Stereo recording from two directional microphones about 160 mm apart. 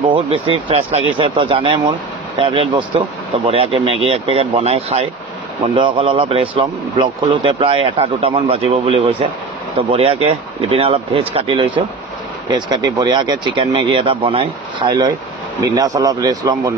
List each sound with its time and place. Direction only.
0.0 s speech: 35° right (ahead or behind)